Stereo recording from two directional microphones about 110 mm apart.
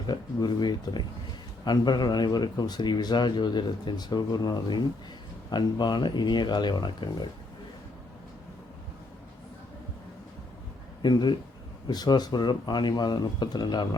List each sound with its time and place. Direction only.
0.1 s speech: 40° left (ahead or behind)
11.0 s speech: 40° left (ahead or behind)